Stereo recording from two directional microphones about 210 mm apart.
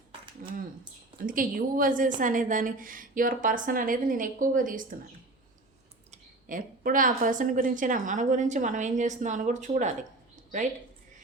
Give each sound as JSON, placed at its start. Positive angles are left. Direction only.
{"t": 0.4, "sound": "a sound", "side_deg": -40}
{"t": 1.2, "sound": "a woman's voice", "side_deg": -40}
{"t": 6.1, "sound": "a woman's voice", "side_deg": -40}